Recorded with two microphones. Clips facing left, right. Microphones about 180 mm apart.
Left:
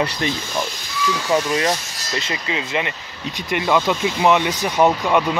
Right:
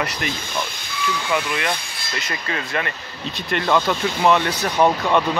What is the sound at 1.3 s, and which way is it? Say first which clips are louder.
Speech: left 6 dB; 40° left (ahead or behind).